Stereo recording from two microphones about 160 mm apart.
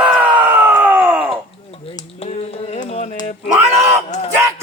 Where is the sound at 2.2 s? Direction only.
40° left (ahead or behind).